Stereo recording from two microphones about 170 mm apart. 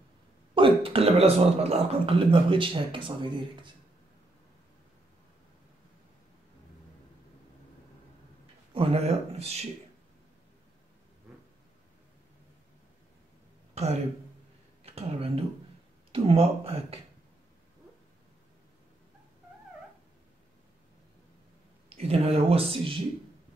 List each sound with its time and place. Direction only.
0.6 s a man's voice: 30° right (ahead or behind)
8.7 s a man's voice: 35° right (ahead or behind)
14.8 s a man's voice: 35° right (ahead or behind)
21.8 s a man's voice: 35° right (ahead or behind)